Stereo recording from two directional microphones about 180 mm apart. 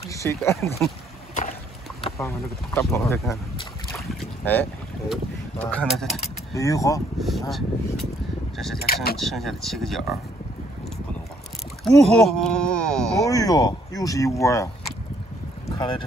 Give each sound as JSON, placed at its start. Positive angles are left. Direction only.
{"t": 0.1, "sound": "speech", "side_deg": 15}
{"t": 2.1, "sound": "speech", "side_deg": 15}
{"t": 3.9, "sound": "boat", "side_deg": 0}
{"t": 5.1, "sound": "speech", "side_deg": 5}
{"t": 6.5, "sound": "speech", "side_deg": 20}
{"t": 7.2, "sound": "speech", "side_deg": 0}
{"t": 8.7, "sound": "speech", "side_deg": 60}
{"t": 9.2, "sound": "speech", "side_deg": 0}
{"t": 11.8, "sound": "speech", "side_deg": 0}
{"t": 13.3, "sound": "speech", "side_deg": 20}